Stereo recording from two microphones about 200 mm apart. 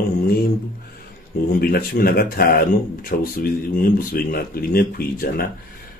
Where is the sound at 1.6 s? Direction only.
50° left (ahead or behind).